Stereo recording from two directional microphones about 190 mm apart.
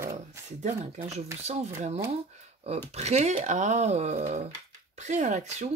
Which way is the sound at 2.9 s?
35° right (ahead or behind).